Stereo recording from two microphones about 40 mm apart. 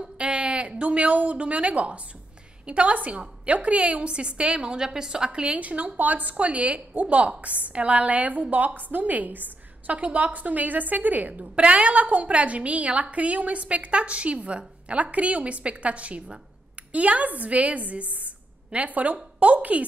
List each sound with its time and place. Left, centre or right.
0.2 s a woman's voice: right
18.1 s a sound: right
19.1 s a woman's voice: right